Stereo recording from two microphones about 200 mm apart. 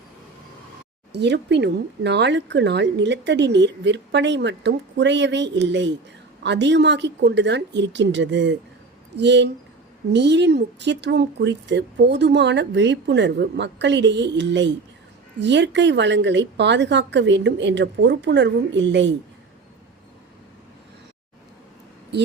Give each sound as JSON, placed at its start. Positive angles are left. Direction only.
{"t": 1.1, "sound": "speech", "side_deg": -60}